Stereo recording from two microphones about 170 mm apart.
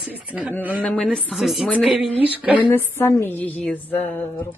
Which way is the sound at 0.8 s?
5° left (ahead or behind).